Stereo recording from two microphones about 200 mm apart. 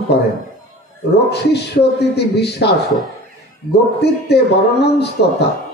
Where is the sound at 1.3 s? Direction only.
55° left (ahead or behind).